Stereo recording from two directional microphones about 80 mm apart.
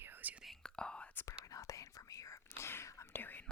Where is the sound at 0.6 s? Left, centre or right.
Centre.